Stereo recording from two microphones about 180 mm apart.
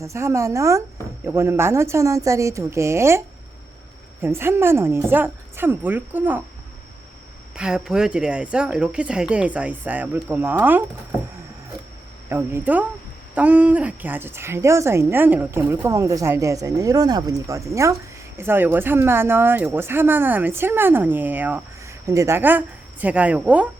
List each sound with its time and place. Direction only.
0.0 s speech: 15° right (ahead or behind)
7.5 s speech: 5° right (ahead or behind)
12.3 s speech: 10° right (ahead or behind)